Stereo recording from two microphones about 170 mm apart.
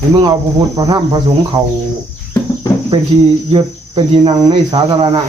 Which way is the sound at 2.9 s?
30° right (ahead or behind).